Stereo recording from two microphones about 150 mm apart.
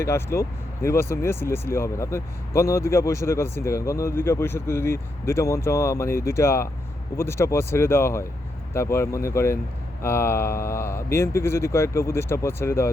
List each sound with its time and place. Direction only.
0.0 s speech: 15° left (ahead or behind)